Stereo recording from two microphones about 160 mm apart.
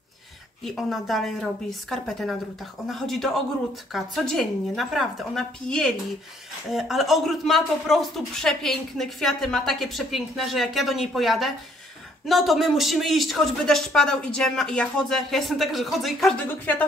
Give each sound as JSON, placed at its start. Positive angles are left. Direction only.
{"t": 0.7, "sound": "speech", "side_deg": 0}
{"t": 16.4, "sound": "speech", "side_deg": 10}